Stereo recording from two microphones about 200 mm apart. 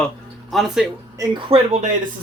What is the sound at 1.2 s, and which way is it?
Speech, 20° right (ahead or behind).